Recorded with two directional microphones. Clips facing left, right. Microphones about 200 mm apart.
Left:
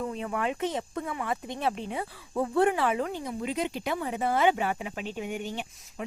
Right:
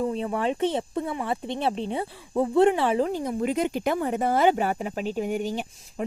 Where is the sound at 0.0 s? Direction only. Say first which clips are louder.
Right 5 dB; 30° right (ahead or behind).